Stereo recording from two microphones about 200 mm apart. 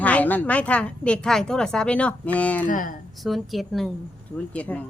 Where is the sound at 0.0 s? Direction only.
10° left (ahead or behind).